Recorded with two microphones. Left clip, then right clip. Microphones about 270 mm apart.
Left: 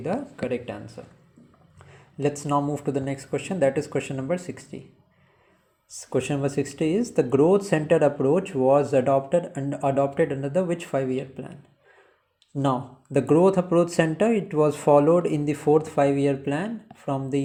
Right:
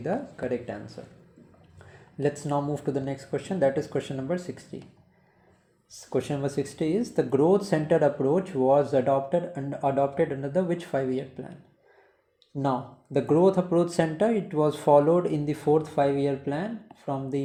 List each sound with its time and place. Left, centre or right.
0.0 s speech: centre
2.2 s speech: centre
6.0 s speech: left
12.5 s speech: left